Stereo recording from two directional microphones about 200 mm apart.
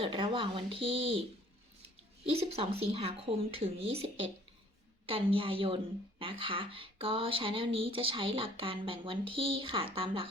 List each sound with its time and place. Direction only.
0.0 s a woman's voice: 25° right (ahead or behind)
2.3 s a woman's voice: 30° right (ahead or behind)
5.0 s a woman's voice: 25° right (ahead or behind)